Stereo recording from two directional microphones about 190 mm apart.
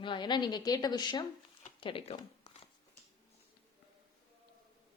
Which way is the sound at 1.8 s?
30° left (ahead or behind).